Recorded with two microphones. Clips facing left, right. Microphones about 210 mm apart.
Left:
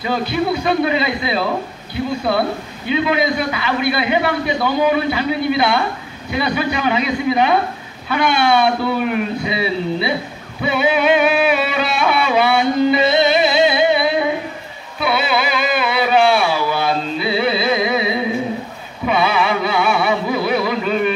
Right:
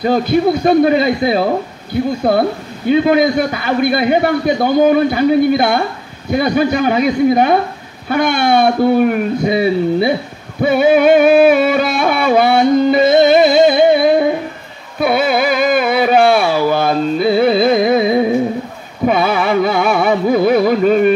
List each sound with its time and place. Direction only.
0.0 s a man's voice: 45° right (ahead or behind)
10.6 s music: 45° right (ahead or behind)
15.0 s carnatic music: 45° right (ahead or behind)